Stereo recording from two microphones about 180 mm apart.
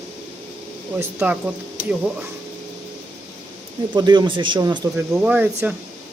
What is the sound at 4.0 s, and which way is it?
Speech, 25° right (ahead or behind).